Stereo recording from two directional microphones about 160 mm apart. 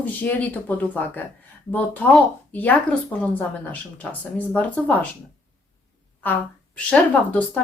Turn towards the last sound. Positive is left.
turn(degrees=10)  # may be behind; listen again after turning